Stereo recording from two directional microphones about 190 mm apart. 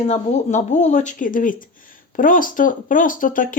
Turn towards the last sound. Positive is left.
turn(degrees=45)  # may be behind; listen again after turning